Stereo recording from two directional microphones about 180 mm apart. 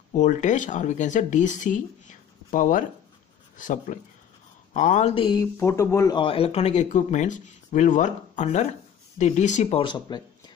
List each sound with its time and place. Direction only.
0.1 s speech: 45° left (ahead or behind)
5.1 s speech: 25° left (ahead or behind)